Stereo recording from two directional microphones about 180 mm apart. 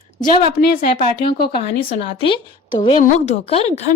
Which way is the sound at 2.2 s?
25° left (ahead or behind).